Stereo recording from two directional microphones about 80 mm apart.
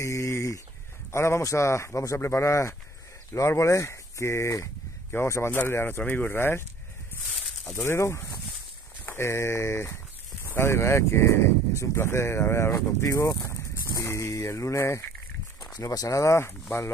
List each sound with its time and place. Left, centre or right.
0.0 s chicken: left
1.1 s speech: left
7.7 s speech: left
15.6 s speech: left